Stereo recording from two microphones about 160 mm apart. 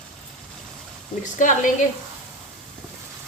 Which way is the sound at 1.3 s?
55° left (ahead or behind).